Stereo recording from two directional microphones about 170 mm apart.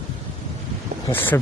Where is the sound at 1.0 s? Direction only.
10° left (ahead or behind).